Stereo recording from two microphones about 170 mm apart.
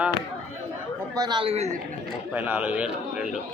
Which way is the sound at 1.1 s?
25° right (ahead or behind).